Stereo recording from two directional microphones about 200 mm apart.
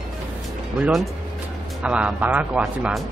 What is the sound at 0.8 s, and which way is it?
Speech, centre (ahead or behind).